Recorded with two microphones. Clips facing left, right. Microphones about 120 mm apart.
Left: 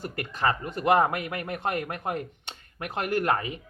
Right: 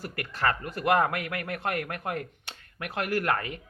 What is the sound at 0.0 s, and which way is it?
Speech, 20° left (ahead or behind).